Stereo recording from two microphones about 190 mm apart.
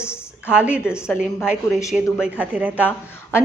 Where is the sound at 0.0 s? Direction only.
15° left (ahead or behind).